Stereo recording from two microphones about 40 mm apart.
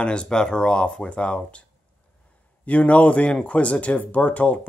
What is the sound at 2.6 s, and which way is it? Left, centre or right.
Speech, left.